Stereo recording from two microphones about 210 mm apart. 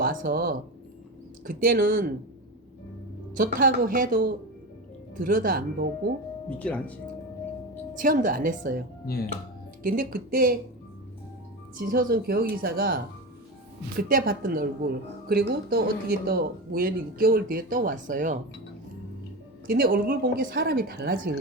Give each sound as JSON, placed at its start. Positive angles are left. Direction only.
{"t": 0.0, "sound": "a woman's voice", "side_deg": -40}
{"t": 3.3, "sound": "a woman's voice", "side_deg": -40}
{"t": 6.6, "sound": "speech", "side_deg": 5}
{"t": 7.9, "sound": "a woman's voice", "side_deg": -40}
{"t": 9.8, "sound": "speech", "side_deg": -45}
{"t": 11.8, "sound": "speech", "side_deg": -45}
{"t": 14.1, "sound": "speech", "side_deg": -40}
{"t": 19.6, "sound": "speech", "side_deg": -45}